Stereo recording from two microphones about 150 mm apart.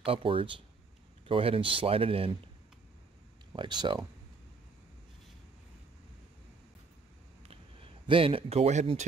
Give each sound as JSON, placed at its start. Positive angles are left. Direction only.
{"t": 0.0, "sound": "speech", "side_deg": -35}
{"t": 3.5, "sound": "speech", "side_deg": -30}
{"t": 7.4, "sound": "a sound", "side_deg": -35}